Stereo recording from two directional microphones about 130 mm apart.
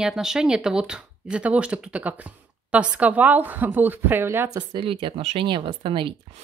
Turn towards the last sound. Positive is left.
turn(degrees=-40)  # may be behind; listen again after turning